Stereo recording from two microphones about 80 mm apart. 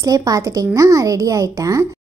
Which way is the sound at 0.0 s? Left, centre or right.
Right.